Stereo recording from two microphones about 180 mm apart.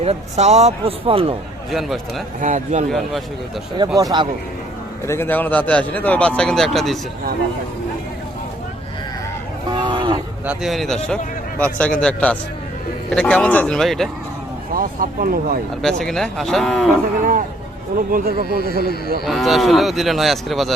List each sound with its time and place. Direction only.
0.0 s a man's voice: 35° right (ahead or behind)
1.7 s speech: centre (ahead or behind)
2.4 s speech: 45° right (ahead or behind)
2.9 s speech: centre (ahead or behind)
3.8 s speech: 20° right (ahead or behind)
5.0 s a man's voice: 15° left (ahead or behind)
9.7 s livestock: 25° right (ahead or behind)
10.4 s speech: 5° right (ahead or behind)
14.8 s speech: 50° right (ahead or behind)
15.8 s speech: 5° left (ahead or behind)
17.9 s a man's voice: 55° right (ahead or behind)
19.2 s speech: centre (ahead or behind)